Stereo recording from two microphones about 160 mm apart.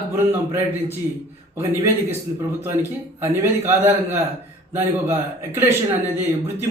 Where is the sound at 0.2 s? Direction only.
15° right (ahead or behind).